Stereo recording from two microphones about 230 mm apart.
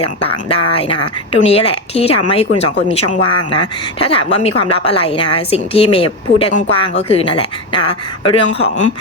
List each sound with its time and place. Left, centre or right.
0.7 s speech: left